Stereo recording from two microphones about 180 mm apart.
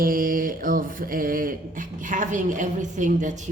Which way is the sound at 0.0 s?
50° right (ahead or behind).